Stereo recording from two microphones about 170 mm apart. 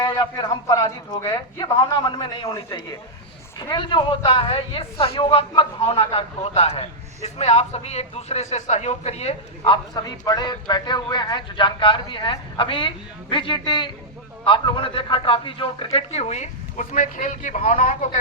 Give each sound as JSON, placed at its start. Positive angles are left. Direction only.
{"t": 0.0, "sound": "a man's voice", "side_deg": 25}